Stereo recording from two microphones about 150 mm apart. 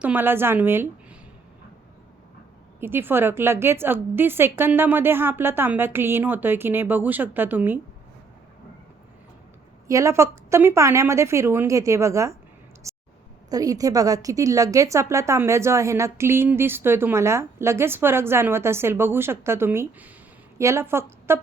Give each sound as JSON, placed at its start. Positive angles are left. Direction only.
{"t": 0.0, "sound": "a woman's voice", "side_deg": -10}
{"t": 2.8, "sound": "a woman's voice", "side_deg": -15}
{"t": 9.8, "sound": "a woman's voice", "side_deg": -20}
{"t": 12.9, "sound": "a sound", "side_deg": -20}
{"t": 13.5, "sound": "a woman's voice", "side_deg": -25}